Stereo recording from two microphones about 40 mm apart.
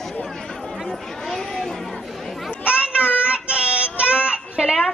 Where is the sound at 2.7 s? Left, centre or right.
Right.